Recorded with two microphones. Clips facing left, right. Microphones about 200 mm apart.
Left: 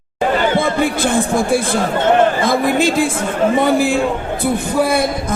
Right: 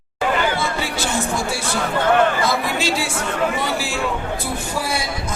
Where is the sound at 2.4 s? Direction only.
50° left (ahead or behind).